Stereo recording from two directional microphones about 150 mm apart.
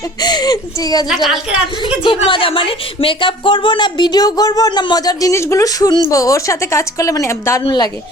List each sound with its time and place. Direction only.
0.2 s speech: 25° left (ahead or behind)
1.0 s a woman's voice: centre (ahead or behind)
2.0 s speech: 35° left (ahead or behind); by 7.6 s 20° left (ahead or behind)
7.6 s a woman's voice: 30° left (ahead or behind)